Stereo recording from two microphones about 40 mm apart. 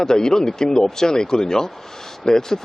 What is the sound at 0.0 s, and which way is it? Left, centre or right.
Speech, centre.